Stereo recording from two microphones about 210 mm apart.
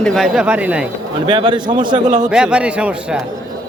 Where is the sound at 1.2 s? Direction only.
20° right (ahead or behind).